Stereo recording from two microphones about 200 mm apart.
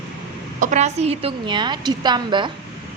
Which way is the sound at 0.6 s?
35° right (ahead or behind).